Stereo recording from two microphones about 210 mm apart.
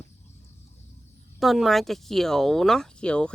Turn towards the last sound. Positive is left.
turn(degrees=5)  # may be behind; listen again after turning